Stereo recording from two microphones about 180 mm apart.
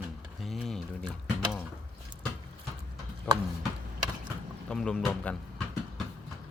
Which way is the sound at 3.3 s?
10° left (ahead or behind).